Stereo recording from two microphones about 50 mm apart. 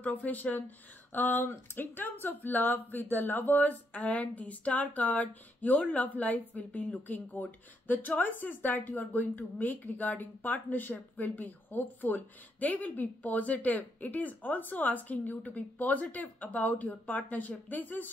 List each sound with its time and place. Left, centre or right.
0.0 s a woman's voice: left